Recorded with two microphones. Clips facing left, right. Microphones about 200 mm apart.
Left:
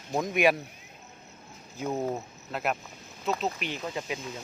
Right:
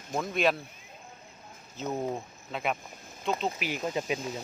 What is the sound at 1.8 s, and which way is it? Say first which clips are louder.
Speech: left 2 dB; 10° left (ahead or behind).